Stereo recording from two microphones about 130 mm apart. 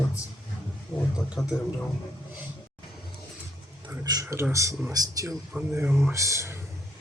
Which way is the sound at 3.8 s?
25° right (ahead or behind).